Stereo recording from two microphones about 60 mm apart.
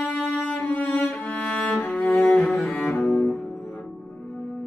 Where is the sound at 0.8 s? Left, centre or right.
Left.